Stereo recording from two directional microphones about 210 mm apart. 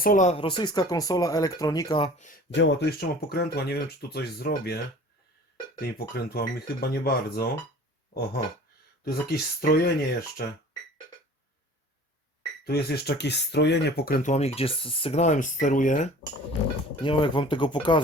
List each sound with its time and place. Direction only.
0.0 s speech: 40° left (ahead or behind); by 2.0 s 20° left (ahead or behind)
2.1 s speech: 35° left (ahead or behind)
2.5 s speech: 60° left (ahead or behind)
5.8 s speech: 45° left (ahead or behind)
9.0 s speech: 45° left (ahead or behind)
12.6 s speech: 45° left (ahead or behind)
17.0 s speech: 20° left (ahead or behind)